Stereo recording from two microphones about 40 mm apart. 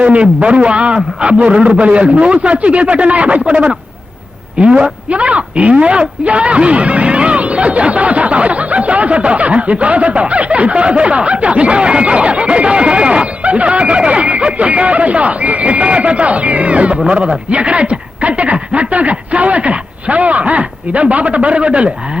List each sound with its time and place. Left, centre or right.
0.0 s a man's voice: right